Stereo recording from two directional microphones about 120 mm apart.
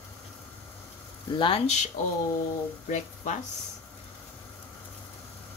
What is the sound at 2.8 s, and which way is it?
Speech, 90° left.